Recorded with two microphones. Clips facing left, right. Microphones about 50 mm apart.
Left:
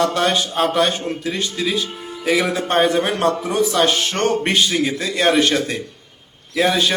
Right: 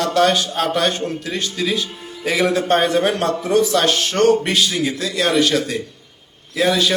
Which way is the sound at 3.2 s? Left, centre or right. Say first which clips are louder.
Right 1 dB; centre.